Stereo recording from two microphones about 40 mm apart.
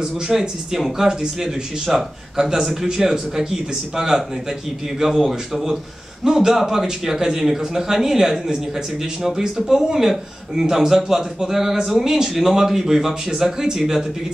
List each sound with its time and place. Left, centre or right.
0.0 s speech: centre
1.0 s speech: centre
9.7 s speech: centre